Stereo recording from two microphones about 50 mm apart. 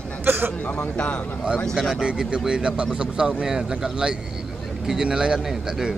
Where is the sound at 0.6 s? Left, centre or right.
Left.